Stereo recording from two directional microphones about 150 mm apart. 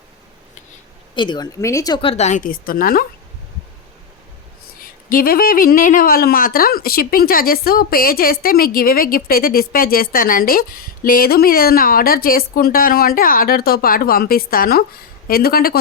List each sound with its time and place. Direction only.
1.1 s speech: 30° left (ahead or behind)
2.0 s a woman's voice: 40° left (ahead or behind); by 3.1 s 75° left (ahead or behind)
4.8 s speech: 70° left (ahead or behind); by 15.8 s 90° left